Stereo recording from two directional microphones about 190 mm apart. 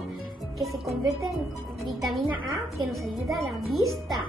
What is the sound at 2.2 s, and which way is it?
Speech, 15° right (ahead or behind).